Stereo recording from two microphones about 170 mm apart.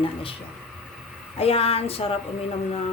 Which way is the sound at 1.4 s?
35° left (ahead or behind).